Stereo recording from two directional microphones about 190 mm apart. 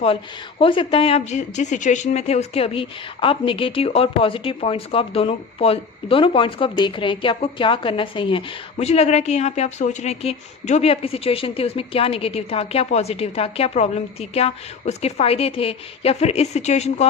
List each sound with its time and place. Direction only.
0.6 s speech: 25° left (ahead or behind)